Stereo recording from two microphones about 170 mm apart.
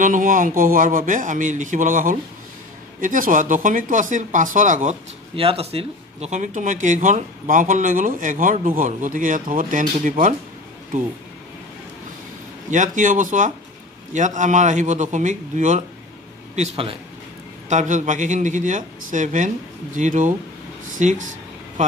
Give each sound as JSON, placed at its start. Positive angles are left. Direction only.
{"t": 0.0, "sound": "speech", "side_deg": -50}
{"t": 5.3, "sound": "speech", "side_deg": -35}
{"t": 12.7, "sound": "a man's voice", "side_deg": -50}